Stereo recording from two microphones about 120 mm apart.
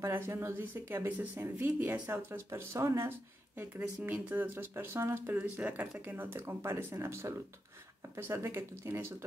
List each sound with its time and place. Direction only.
0.0 s speech: 20° right (ahead or behind)